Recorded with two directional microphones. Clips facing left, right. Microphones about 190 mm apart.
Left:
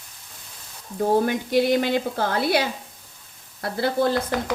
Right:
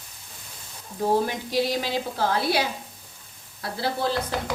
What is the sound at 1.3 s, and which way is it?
A woman's voice, 55° left (ahead or behind).